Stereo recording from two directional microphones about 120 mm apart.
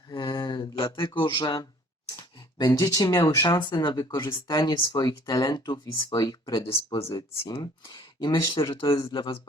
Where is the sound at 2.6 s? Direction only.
35° left (ahead or behind).